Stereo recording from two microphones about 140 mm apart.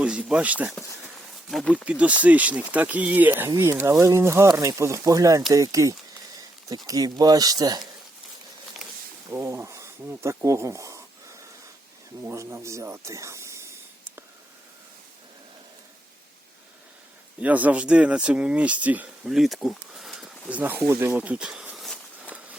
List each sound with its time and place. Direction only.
0.0 s speech: 10° right (ahead or behind)
1.7 s speech: 10° right (ahead or behind); by 7.9 s 30° right (ahead or behind)
9.3 s speech: 15° right (ahead or behind)
17.4 s speech: 10° right (ahead or behind)